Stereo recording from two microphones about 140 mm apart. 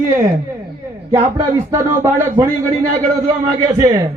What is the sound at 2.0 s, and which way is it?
Speech, 20° right (ahead or behind).